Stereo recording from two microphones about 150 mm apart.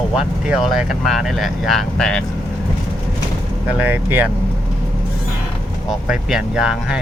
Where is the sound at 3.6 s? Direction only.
10° right (ahead or behind).